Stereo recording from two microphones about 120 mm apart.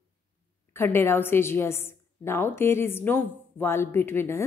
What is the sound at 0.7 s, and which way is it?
A woman's voice, 20° left (ahead or behind).